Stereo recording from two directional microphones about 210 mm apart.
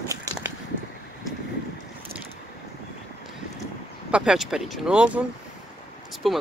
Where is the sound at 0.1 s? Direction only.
15° right (ahead or behind).